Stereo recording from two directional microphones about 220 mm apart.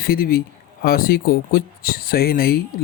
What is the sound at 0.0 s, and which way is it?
Speech, 40° left (ahead or behind).